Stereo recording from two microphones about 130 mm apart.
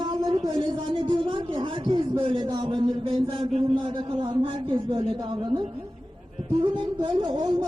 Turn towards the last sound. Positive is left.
turn(degrees=-35)  # may be behind; listen again after turning